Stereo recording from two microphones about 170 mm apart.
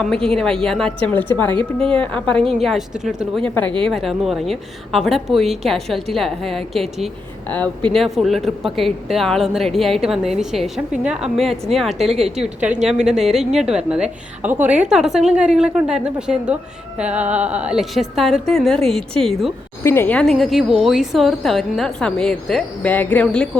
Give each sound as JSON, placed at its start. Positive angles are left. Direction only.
{"t": 0.0, "sound": "a woman's voice", "side_deg": 5}
{"t": 1.5, "sound": "speech", "side_deg": -30}
{"t": 2.0, "sound": "a woman's voice", "side_deg": 5}
{"t": 19.8, "sound": "a woman's voice", "side_deg": 15}